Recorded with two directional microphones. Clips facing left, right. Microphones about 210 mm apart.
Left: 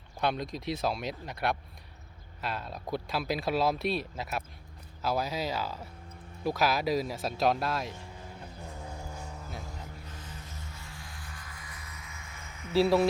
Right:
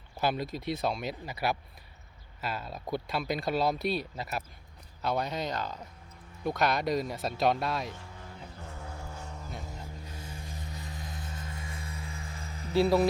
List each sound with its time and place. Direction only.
0.2 s speech: 5° right (ahead or behind)
8.6 s a sound: 15° left (ahead or behind)
9.4 s vehicle: centre (ahead or behind)
9.7 s vehicle: 10° right (ahead or behind); by 12.7 s 35° right (ahead or behind)
12.7 s speech: centre (ahead or behind)